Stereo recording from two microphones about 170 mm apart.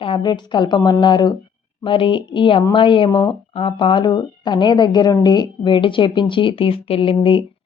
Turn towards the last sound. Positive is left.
turn(degrees=30)  # may be behind; listen again after turning